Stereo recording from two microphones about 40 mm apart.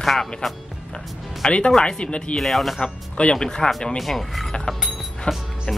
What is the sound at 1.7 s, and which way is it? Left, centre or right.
Speech, centre.